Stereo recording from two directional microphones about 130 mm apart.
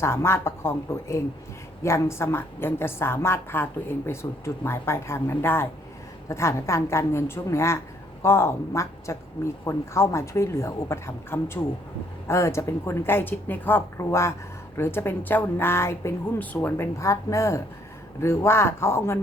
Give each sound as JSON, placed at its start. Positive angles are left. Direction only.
{"t": 0.0, "sound": "a woman's voice", "side_deg": 20}